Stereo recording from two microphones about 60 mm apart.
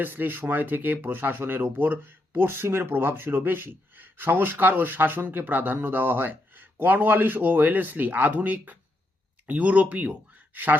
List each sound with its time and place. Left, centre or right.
0.0 s speech: right